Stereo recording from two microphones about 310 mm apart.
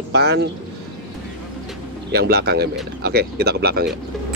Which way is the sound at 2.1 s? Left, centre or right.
Right.